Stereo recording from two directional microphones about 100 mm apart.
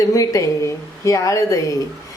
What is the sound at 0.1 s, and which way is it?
A woman's voice, 35° left (ahead or behind).